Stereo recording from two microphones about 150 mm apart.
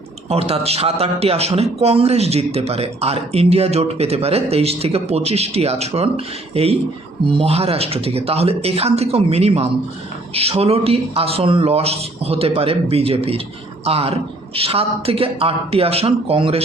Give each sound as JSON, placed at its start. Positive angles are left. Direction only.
{"t": 0.3, "sound": "a man's voice", "side_deg": -40}